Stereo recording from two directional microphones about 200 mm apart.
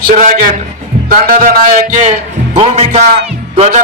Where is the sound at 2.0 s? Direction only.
35° right (ahead or behind).